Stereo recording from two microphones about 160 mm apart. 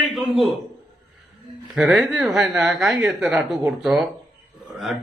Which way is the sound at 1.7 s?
Centre (ahead or behind).